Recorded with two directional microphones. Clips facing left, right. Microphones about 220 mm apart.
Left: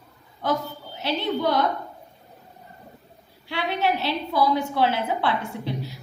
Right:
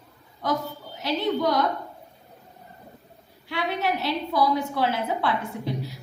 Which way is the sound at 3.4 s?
30° left (ahead or behind).